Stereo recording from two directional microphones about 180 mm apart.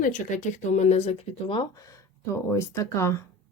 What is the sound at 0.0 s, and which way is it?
Speech, 45° left (ahead or behind).